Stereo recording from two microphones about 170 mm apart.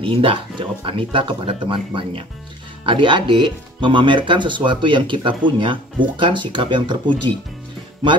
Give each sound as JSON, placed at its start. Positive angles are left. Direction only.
{"t": 0.0, "sound": "speech", "side_deg": -30}